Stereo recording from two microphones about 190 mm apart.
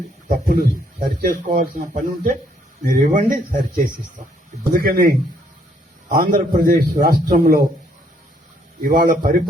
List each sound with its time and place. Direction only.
0.3 s speech: 50° right (ahead or behind)
6.3 s speech: 50° right (ahead or behind)
8.8 s speech: 45° right (ahead or behind)